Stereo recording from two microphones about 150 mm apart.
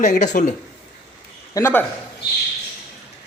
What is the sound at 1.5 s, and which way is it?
Speech, 15° left (ahead or behind).